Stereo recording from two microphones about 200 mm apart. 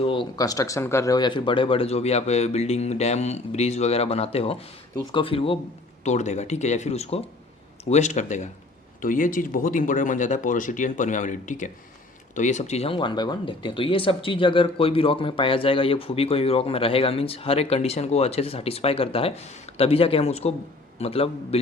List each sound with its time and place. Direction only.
0.0 s speech: 25° left (ahead or behind)